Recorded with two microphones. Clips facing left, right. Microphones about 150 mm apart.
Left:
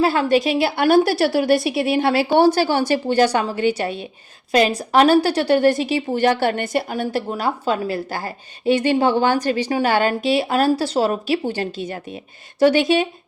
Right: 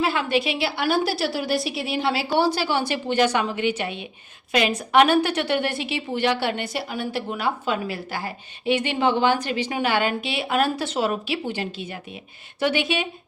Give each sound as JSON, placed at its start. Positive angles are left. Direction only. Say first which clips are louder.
{"t": 0.0, "sound": "a woman's voice", "louder": "left 6 dB", "side_deg": 40}